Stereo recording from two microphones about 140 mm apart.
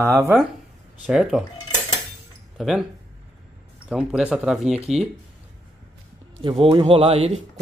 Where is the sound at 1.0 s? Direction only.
5° right (ahead or behind).